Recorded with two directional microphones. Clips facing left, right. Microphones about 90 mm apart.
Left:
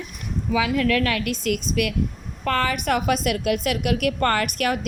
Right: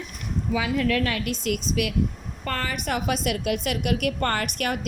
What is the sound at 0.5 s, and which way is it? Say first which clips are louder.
Speech: left 3 dB; 90° left.